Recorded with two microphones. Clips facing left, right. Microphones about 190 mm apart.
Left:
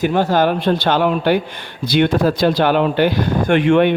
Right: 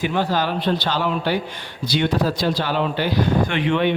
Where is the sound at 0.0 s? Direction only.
50° left (ahead or behind).